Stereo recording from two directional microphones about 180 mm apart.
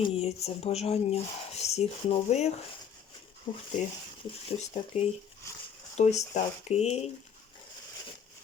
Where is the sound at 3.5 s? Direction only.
25° left (ahead or behind).